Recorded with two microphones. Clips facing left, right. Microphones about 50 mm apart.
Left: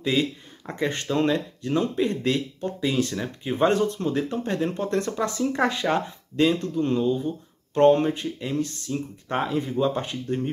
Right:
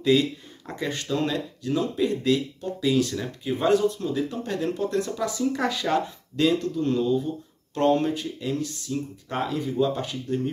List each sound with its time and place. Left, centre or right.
0.0 s a sound: left
1.0 s speech: left
4.6 s speech: left
4.8 s speech: left